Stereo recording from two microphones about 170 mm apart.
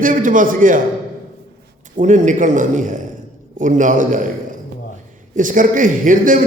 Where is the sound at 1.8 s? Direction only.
45° right (ahead or behind).